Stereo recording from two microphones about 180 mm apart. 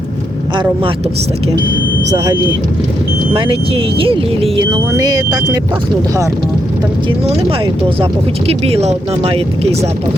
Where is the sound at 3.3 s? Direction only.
30° right (ahead or behind).